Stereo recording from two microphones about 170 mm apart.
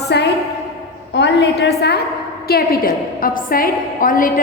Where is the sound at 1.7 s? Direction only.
70° left (ahead or behind).